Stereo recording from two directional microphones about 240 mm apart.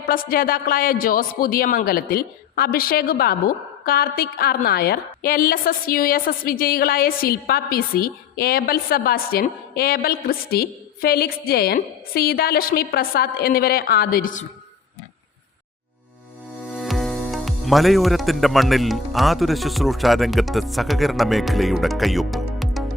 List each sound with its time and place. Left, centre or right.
0.0 s a woman's voice: left
16.7 s speech: centre